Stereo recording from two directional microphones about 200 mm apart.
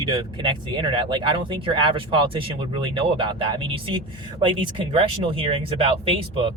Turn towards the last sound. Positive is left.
turn(degrees=-25)  # may be behind; listen again after turning